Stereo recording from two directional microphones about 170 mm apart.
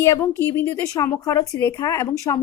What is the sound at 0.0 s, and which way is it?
Speech, 15° left (ahead or behind).